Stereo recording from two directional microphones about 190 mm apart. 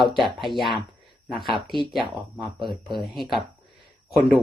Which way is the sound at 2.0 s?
25° right (ahead or behind).